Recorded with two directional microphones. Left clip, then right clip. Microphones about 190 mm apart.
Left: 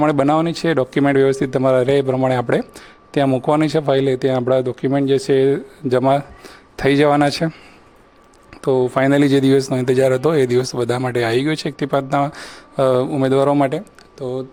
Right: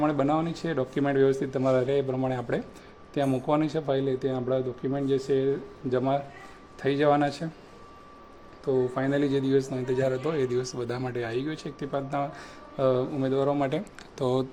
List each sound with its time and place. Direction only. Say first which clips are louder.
0.0 s speech: left 10 dB; 40° left (ahead or behind)
8.6 s speech: left 11 dB; 45° left (ahead or behind)
14.2 s speech: left 2 dB; centre (ahead or behind)